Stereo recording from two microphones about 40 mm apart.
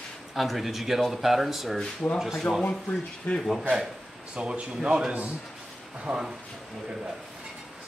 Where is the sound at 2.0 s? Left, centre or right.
Left.